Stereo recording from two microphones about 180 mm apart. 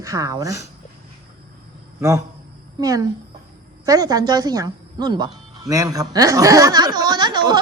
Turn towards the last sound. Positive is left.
turn(degrees=-25)  # may be behind; listen again after turning